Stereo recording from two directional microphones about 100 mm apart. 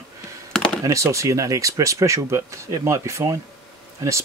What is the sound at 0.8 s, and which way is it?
Speech, 30° right (ahead or behind).